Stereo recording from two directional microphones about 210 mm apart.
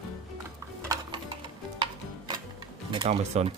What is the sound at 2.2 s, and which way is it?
Music, 20° right (ahead or behind).